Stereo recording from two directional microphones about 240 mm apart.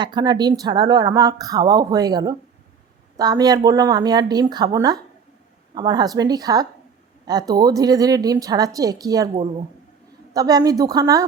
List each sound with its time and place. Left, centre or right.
0.0 s speech: centre
10.3 s speech: centre